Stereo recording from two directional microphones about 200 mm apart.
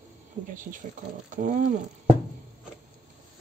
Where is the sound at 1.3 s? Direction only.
40° right (ahead or behind).